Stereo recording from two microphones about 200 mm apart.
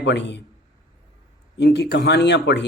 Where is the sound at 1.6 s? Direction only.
55° left (ahead or behind).